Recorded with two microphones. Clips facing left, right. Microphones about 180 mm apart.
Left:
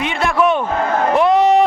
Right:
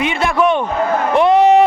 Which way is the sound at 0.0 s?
Centre (ahead or behind).